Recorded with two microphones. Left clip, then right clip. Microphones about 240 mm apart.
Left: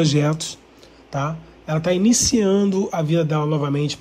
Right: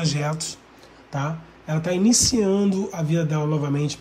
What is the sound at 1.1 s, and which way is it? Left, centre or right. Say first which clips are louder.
Speech: left 4 dB; centre.